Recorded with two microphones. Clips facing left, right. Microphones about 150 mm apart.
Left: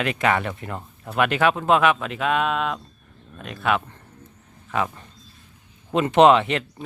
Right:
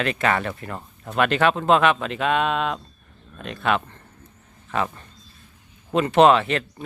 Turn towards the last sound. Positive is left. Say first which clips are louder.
# left 1 dB
turn(degrees=20)  # may be behind; listen again after turning